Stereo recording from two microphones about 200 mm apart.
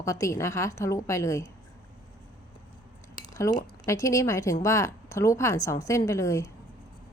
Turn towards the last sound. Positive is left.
turn(degrees=15)  # may be behind; listen again after turning